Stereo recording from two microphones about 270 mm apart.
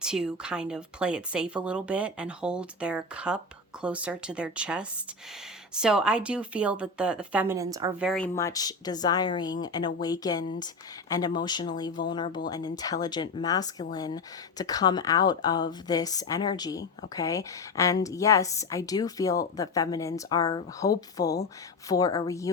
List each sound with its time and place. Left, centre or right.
0.0 s speech: centre
8.0 s a woman's voice: centre